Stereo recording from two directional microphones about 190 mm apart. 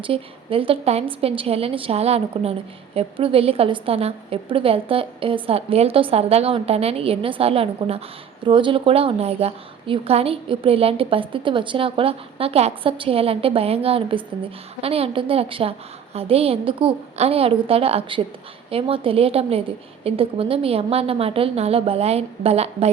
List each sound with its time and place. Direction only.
0.0 s a woman's voice: 30° right (ahead or behind)